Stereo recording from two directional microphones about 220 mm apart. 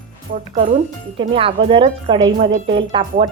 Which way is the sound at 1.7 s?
25° right (ahead or behind).